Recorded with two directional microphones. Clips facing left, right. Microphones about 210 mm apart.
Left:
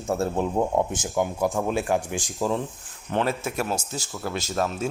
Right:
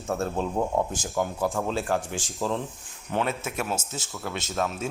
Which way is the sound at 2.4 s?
Centre (ahead or behind).